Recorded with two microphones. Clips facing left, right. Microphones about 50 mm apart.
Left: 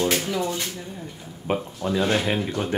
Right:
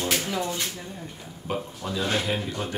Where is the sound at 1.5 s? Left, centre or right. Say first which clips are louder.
Left 6 dB; left.